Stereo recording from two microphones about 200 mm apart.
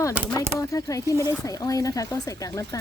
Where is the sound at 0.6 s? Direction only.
15° left (ahead or behind).